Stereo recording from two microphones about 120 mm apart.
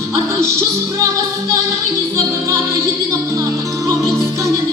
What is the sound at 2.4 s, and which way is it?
Music, 25° right (ahead or behind).